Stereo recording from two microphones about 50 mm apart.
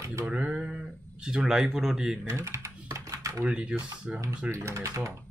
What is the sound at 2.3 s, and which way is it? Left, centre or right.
Typing, right.